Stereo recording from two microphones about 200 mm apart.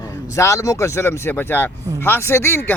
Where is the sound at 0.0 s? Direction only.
15° left (ahead or behind).